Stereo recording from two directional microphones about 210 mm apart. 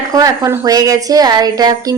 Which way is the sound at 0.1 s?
15° right (ahead or behind).